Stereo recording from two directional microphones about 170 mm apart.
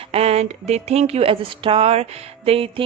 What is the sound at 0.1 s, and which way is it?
Speech, 35° right (ahead or behind).